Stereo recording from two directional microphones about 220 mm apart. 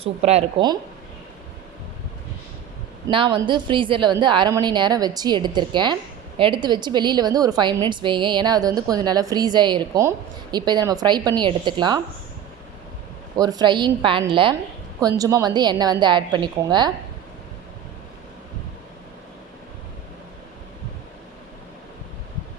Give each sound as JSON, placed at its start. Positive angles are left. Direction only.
{"t": 0.0, "sound": "a woman's voice", "side_deg": -30}
{"t": 3.1, "sound": "a woman's voice", "side_deg": -20}
{"t": 13.3, "sound": "a woman's voice", "side_deg": -20}